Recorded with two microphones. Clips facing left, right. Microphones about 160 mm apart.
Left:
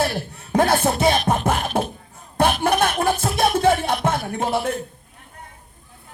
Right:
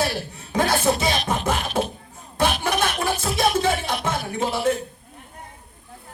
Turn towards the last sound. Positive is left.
turn(degrees=55)  # may be behind; listen again after turning